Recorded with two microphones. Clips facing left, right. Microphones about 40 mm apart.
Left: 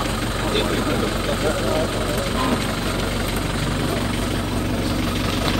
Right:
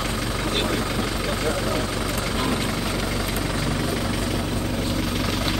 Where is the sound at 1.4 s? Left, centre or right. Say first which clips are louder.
Left 4 dB; left.